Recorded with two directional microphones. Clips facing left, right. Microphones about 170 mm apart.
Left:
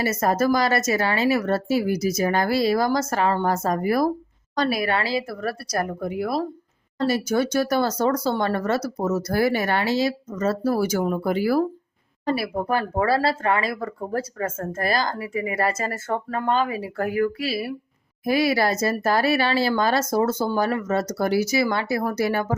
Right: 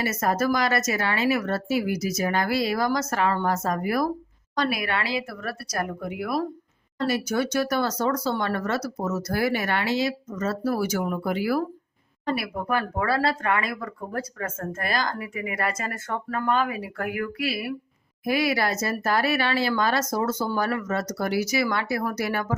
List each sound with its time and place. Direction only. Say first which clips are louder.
0.0 s speech: left 3 dB; 30° left (ahead or behind)